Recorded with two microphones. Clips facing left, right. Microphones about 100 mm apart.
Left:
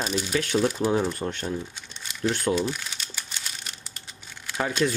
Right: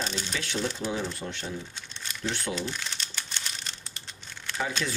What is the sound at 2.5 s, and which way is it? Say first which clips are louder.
Crumpling: left 6 dB; 10° left (ahead or behind).